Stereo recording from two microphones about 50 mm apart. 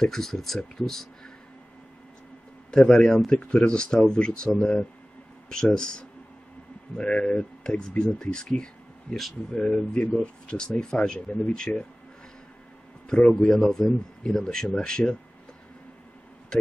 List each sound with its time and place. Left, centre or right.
0.0 s speech: centre
2.9 s speech: centre
3.3 s speech: left
9.1 s speech: centre
13.1 s speech: left
13.5 s speech: centre